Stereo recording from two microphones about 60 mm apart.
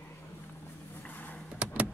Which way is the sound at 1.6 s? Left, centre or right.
Right.